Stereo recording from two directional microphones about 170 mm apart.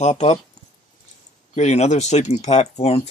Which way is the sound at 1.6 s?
40° left (ahead or behind).